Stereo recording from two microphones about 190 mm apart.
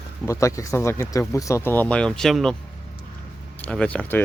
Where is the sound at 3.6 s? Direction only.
5° left (ahead or behind).